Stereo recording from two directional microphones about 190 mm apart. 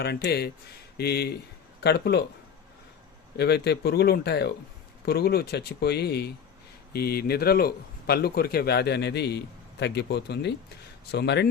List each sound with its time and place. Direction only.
0.0 s speech: 55° left (ahead or behind)
3.3 s speech: 60° left (ahead or behind)